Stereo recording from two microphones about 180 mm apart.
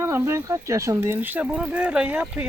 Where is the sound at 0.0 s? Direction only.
15° right (ahead or behind).